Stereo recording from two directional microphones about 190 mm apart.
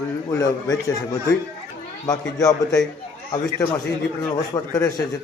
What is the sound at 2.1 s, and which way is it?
A man's voice, 20° left (ahead or behind).